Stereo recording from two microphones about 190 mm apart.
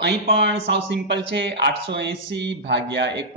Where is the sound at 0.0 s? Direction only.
65° right (ahead or behind).